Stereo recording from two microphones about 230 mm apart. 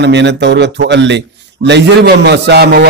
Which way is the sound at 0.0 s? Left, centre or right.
Right.